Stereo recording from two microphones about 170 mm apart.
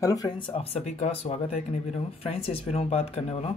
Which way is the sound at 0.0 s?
20° left (ahead or behind).